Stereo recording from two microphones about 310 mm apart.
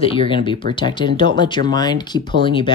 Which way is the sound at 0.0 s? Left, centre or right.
Centre.